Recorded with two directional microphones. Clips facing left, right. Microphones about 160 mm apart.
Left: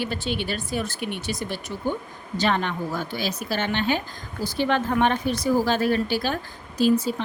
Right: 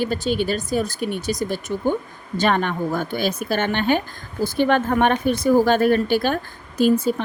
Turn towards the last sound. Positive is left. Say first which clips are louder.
# right 3 dB
turn(degrees=-55)  # may be behind; listen again after turning